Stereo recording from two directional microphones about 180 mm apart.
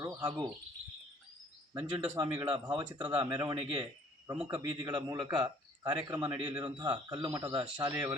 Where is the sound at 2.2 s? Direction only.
5° right (ahead or behind).